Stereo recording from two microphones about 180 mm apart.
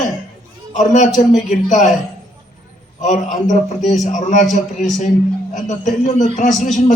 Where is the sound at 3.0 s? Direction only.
45° left (ahead or behind).